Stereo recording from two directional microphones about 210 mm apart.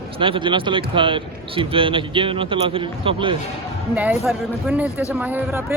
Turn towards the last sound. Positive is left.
turn(degrees=-10)  # may be behind; listen again after turning